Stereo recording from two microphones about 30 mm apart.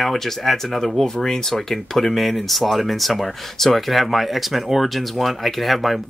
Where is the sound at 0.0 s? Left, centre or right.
Centre.